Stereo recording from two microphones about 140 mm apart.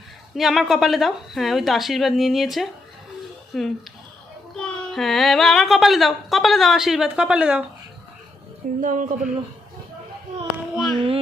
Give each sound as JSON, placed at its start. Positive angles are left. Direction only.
{"t": 0.3, "sound": "a woman's voice", "side_deg": 0}
{"t": 8.8, "sound": "speech", "side_deg": -65}
{"t": 10.9, "sound": "music", "side_deg": -40}